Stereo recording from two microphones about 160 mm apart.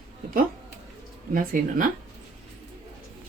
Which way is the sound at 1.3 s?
60° right (ahead or behind).